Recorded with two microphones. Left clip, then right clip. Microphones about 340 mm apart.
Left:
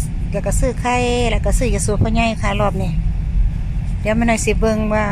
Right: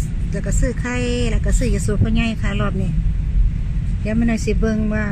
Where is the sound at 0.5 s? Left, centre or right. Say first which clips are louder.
Left 6 dB; centre.